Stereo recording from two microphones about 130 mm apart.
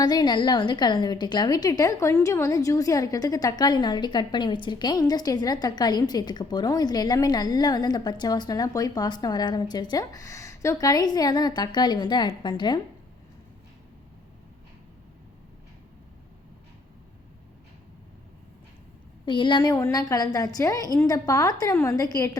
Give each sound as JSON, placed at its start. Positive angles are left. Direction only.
{"t": 0.0, "sound": "a woman's voice", "side_deg": 30}
{"t": 19.2, "sound": "a woman's voice", "side_deg": 40}